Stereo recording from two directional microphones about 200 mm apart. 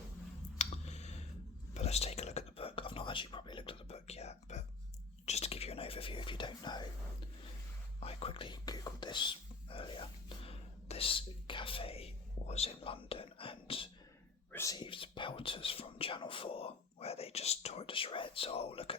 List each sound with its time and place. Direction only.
0.6 s clicking: 35° left (ahead or behind)
1.7 s whispering: 35° left (ahead or behind)
8.0 s whispering: 25° left (ahead or behind)
14.5 s whispering: 15° left (ahead or behind)